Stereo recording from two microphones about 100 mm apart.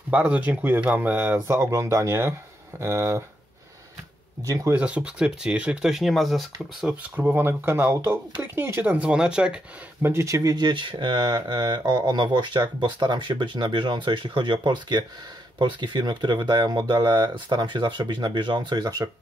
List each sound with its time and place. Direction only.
0.1 s speech: 15° right (ahead or behind)
1.5 s speech: 30° right (ahead or behind)
4.4 s speech: 35° right (ahead or behind)
4.7 s speech: 10° right (ahead or behind)
6.9 s speech: 15° right (ahead or behind)
10.0 s speech: 30° right (ahead or behind)